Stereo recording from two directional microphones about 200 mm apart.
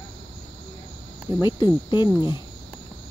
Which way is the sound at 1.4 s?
20° left (ahead or behind).